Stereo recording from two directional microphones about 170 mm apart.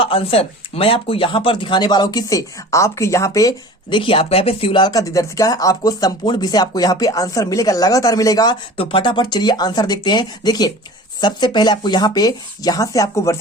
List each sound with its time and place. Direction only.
0.0 s speech: 30° left (ahead or behind)
8.7 s speech: 30° left (ahead or behind)